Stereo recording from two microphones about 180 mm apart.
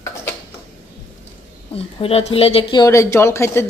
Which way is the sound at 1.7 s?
30° left (ahead or behind).